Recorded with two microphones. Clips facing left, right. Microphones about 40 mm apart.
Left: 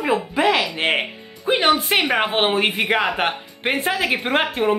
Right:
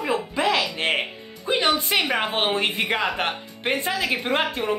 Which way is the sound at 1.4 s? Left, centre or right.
Left.